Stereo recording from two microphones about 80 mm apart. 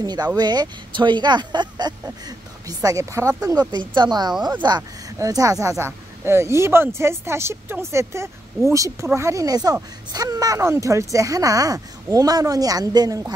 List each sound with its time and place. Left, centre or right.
0.0 s speech: right
2.2 s speech: right
3.8 s a woman's voice: right
5.2 s speech: right